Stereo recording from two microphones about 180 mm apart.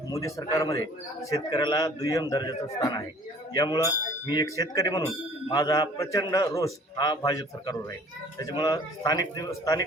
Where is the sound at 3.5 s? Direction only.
20° left (ahead or behind).